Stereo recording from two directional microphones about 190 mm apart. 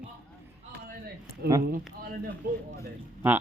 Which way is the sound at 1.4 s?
60° right (ahead or behind).